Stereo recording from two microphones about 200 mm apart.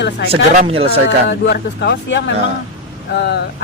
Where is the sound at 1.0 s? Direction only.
65° left (ahead or behind).